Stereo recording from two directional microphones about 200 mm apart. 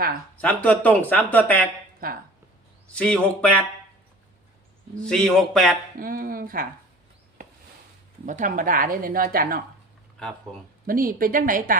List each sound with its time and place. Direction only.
0.4 s speech: 5° left (ahead or behind)
2.0 s speech: 45° right (ahead or behind)
2.9 s a man's voice: 5° left (ahead or behind)
4.9 s a man's voice: 5° left (ahead or behind)
6.0 s speech: 45° right (ahead or behind)
8.3 s speech: 40° right (ahead or behind)
10.8 s speech: 45° right (ahead or behind)